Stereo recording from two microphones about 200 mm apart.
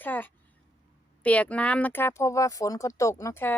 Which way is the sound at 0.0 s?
10° left (ahead or behind).